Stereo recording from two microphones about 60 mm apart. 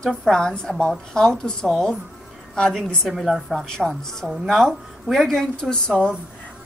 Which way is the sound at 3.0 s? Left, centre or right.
Centre.